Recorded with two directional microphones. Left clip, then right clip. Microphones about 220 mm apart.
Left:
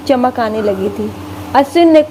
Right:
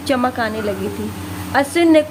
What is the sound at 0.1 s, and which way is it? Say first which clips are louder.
A woman's voice: left 6 dB; 20° left (ahead or behind).